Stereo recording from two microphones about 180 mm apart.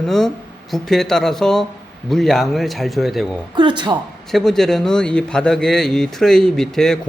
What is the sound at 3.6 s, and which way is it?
Speech, 25° right (ahead or behind).